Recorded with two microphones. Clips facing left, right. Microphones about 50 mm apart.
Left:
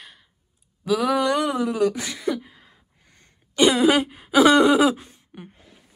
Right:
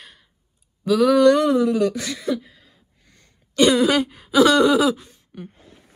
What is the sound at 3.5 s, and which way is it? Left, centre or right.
A woman's voice, centre.